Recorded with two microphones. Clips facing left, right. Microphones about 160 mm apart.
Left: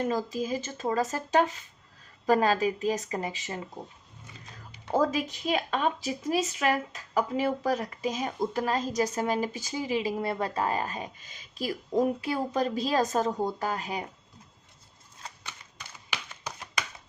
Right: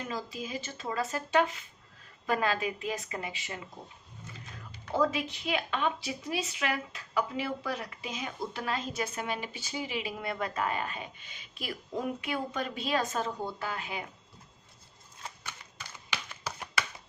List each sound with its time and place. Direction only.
0.0 s speech: 45° left (ahead or behind)
4.9 s speech: 40° left (ahead or behind)